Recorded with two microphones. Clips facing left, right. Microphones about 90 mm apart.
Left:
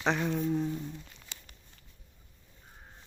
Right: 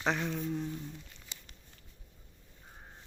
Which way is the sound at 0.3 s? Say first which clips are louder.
Left 5 dB; 10° left (ahead or behind).